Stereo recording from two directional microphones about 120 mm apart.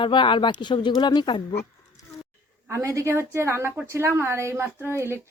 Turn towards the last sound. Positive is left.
turn(degrees=-20)  # may be behind; listen again after turning